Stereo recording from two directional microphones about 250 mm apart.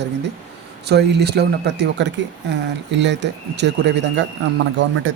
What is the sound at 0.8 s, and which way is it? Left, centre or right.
Speech, right.